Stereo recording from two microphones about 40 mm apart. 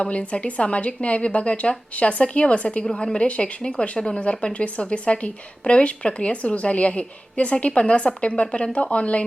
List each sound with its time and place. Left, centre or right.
0.0 s speech: left